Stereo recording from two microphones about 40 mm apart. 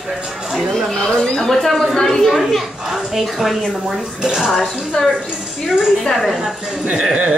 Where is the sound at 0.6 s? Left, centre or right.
Centre.